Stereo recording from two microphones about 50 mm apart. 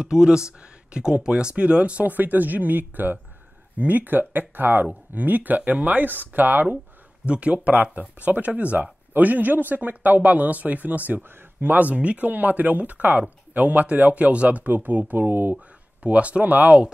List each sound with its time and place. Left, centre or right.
0.0 s speech: centre
2.1 s speech: right
7.2 s speech: right
16.0 s speech: right